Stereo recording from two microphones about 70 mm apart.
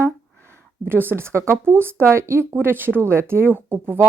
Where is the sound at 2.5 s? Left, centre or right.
Right.